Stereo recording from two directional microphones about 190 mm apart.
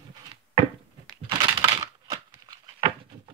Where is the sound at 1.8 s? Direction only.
20° right (ahead or behind).